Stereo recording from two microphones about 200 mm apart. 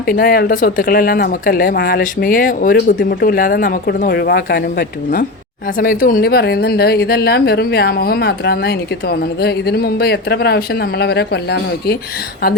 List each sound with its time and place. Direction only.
0.0 s speech: 50° left (ahead or behind)